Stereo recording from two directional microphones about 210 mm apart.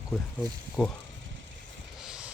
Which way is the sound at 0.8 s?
Centre (ahead or behind).